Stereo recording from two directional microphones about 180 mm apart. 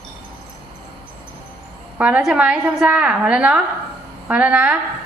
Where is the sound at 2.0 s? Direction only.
5° right (ahead or behind).